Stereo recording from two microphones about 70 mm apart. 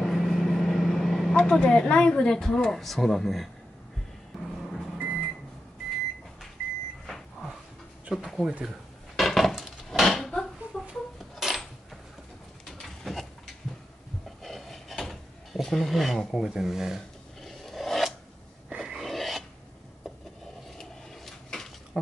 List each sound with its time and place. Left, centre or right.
0.0 s vehicle: centre
1.3 s speech: centre
4.9 s microwave oven: centre
8.1 s speech: centre
8.6 s dishes: centre
10.0 s a sound: centre
10.9 s dishes: centre
12.6 s bird: centre
14.4 s drawer open or close: centre
16.4 s filing: centre
18.7 s a sound: centre
18.9 s filing: centre
20.7 s a sound: centre